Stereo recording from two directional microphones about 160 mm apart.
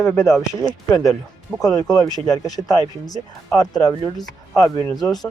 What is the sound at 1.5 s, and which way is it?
Speech, centre (ahead or behind).